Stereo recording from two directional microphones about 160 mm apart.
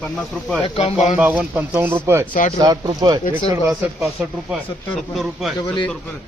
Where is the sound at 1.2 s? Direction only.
10° right (ahead or behind).